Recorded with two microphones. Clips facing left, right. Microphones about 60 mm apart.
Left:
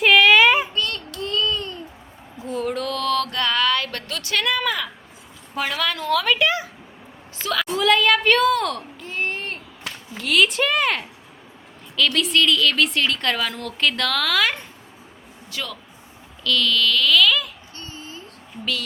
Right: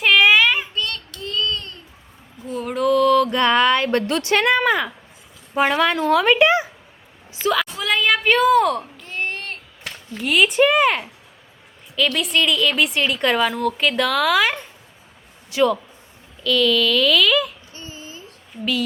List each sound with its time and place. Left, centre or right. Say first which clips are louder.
0.3 s child singing: left 2 dB; centre
0.7 s child singing: left 1 dB; centre
2.4 s mantra: right 3 dB; centre
3.4 s speech: right 5 dB; right
7.5 s a sound: left 4 dB; centre
10.2 s a woman's voice: right 3 dB; centre
16.4 s a sound: right 3 dB; centre